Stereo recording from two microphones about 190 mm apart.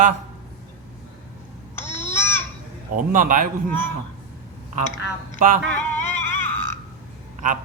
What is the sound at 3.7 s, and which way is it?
Speech, 10° left (ahead or behind).